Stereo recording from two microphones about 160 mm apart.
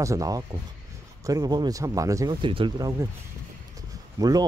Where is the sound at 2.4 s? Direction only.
30° right (ahead or behind).